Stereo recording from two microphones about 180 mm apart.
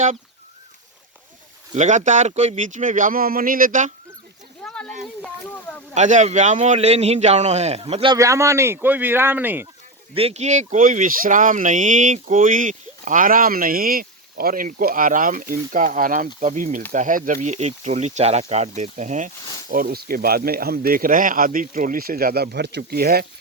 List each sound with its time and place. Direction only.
1.7 s speech: 40° right (ahead or behind)
4.6 s a sound: 5° left (ahead or behind)
5.9 s speech: 40° right (ahead or behind)
8.1 s speech: 15° right (ahead or behind)
10.2 s speech: 35° right (ahead or behind)
19.6 s speech: 55° right (ahead or behind)